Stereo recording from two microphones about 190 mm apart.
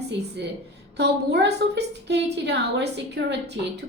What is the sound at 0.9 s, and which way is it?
A woman's voice, 65° right (ahead or behind).